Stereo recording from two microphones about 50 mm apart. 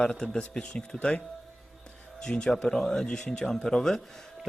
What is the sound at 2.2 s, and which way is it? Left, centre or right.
Speech, centre.